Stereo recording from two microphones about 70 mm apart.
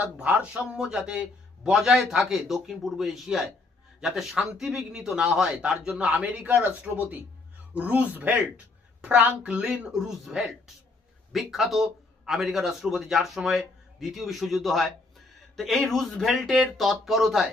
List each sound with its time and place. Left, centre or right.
0.0 s a man's voice: centre
10.0 s a man's voice: centre